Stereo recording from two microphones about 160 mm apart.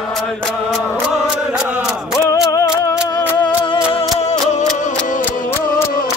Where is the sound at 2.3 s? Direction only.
20° left (ahead or behind).